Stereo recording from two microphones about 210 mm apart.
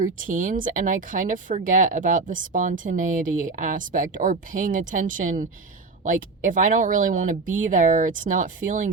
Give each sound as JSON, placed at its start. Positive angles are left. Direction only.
{"t": 0.0, "sound": "speech", "side_deg": -40}